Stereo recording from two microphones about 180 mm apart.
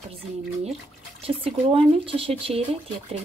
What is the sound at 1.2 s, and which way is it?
A woman's voice, 30° right (ahead or behind).